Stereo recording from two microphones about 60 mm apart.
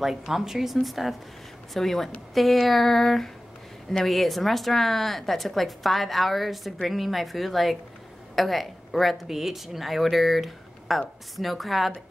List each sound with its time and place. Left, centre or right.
0.0 s a woman's voice: centre